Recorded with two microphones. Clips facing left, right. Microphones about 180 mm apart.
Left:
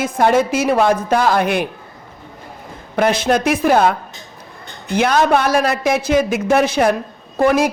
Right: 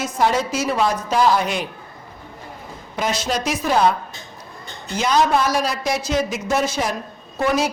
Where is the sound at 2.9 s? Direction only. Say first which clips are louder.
Left 8 dB; 55° left (ahead or behind).